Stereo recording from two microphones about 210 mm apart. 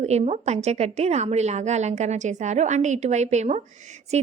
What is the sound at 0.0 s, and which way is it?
A woman's voice, 30° right (ahead or behind).